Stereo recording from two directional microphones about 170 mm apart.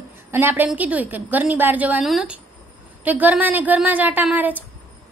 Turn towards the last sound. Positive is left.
turn(degrees=-10)  # may be behind; listen again after turning